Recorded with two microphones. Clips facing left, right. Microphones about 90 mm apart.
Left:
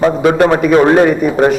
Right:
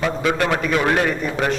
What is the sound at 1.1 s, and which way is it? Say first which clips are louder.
Speech: left 10 dB; 10° left (ahead or behind).